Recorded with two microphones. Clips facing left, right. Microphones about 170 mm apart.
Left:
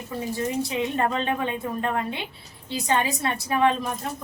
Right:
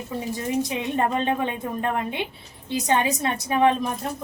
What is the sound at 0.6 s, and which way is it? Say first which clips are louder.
A woman's voice: even; 15° right (ahead or behind).